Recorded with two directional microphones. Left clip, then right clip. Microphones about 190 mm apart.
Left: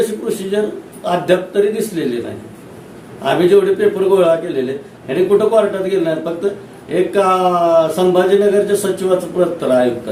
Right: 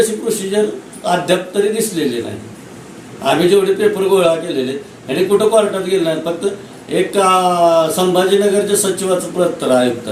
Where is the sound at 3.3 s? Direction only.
5° left (ahead or behind).